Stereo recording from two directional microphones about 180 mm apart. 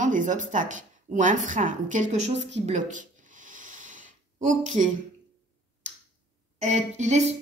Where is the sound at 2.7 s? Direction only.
45° right (ahead or behind).